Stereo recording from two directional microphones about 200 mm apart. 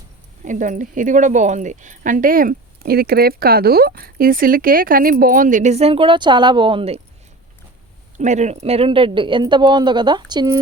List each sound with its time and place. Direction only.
0.4 s speech: 40° right (ahead or behind)
8.2 s speech: 35° right (ahead or behind); by 10.6 s 20° right (ahead or behind)